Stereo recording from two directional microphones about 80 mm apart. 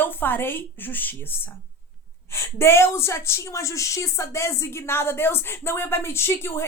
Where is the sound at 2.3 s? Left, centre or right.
Left.